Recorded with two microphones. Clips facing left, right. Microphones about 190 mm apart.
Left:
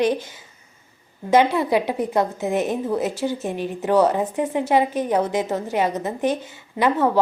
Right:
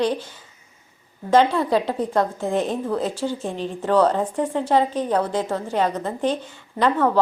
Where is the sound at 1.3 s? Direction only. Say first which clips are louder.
Even; 15° left (ahead or behind).